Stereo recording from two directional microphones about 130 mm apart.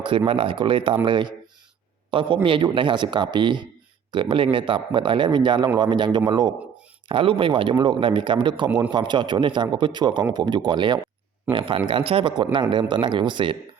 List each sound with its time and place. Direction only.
0.3 s a man's voice: 40° right (ahead or behind)